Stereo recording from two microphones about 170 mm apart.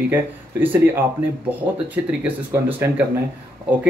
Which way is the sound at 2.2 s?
10° right (ahead or behind).